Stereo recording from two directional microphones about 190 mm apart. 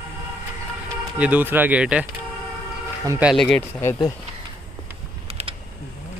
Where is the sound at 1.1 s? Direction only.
5° right (ahead or behind).